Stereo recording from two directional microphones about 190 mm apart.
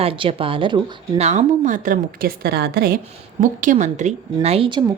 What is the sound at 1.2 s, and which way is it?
Speech, 40° right (ahead or behind).